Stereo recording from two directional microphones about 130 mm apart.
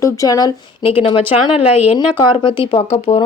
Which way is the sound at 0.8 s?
45° left (ahead or behind).